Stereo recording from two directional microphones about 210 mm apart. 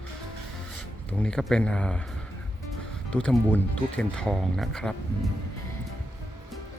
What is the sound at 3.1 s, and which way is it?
Speech, 5° left (ahead or behind).